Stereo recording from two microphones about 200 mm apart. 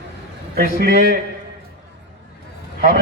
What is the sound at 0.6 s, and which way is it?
Speech, 45° right (ahead or behind).